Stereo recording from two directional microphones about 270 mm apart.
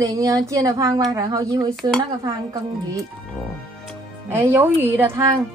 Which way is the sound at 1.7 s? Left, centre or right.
Centre.